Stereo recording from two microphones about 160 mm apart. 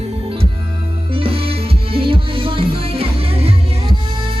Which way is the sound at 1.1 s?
35° right (ahead or behind).